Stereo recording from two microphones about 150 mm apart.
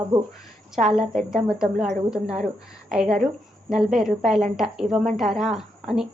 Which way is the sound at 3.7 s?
5° right (ahead or behind).